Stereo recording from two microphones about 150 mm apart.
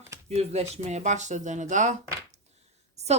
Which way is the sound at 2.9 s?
45° right (ahead or behind).